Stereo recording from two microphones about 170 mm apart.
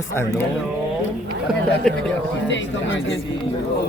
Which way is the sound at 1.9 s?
5° left (ahead or behind).